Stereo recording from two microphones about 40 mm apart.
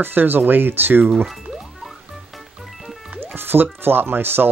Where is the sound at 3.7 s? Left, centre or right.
Right.